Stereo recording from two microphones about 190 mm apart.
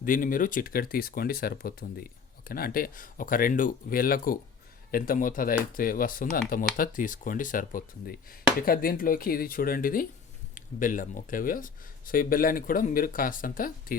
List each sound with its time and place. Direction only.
0.0 s speech: 45° left (ahead or behind)